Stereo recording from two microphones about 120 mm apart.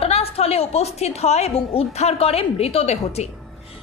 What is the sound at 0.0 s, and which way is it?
A woman's voice, 55° left (ahead or behind).